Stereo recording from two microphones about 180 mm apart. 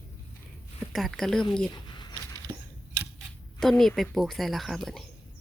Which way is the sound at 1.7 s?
25° left (ahead or behind).